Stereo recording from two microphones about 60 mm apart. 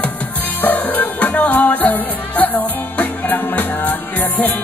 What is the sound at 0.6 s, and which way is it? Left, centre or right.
Music, left.